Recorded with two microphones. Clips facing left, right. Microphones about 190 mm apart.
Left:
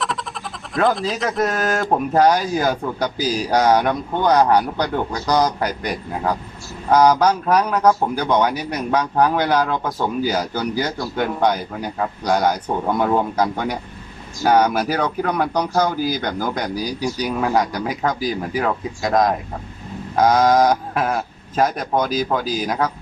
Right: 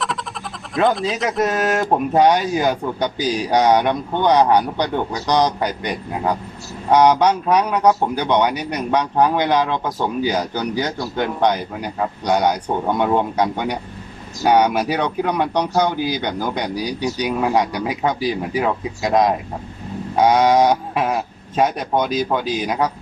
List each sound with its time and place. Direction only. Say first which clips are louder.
0.7 s a man's voice: right 1 dB; centre (ahead or behind)
9.7 s speech: even; 15° right (ahead or behind)
10.6 s a man's voice: even; 5° left (ahead or behind)